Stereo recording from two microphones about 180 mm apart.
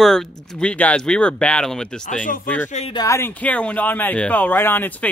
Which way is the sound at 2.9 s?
20° left (ahead or behind).